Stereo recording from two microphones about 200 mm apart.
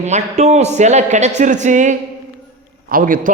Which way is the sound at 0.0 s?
35° right (ahead or behind).